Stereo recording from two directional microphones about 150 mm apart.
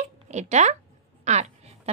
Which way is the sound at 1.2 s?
50° right (ahead or behind).